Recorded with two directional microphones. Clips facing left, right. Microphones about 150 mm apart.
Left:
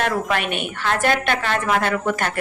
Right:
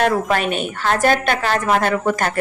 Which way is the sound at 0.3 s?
40° right (ahead or behind).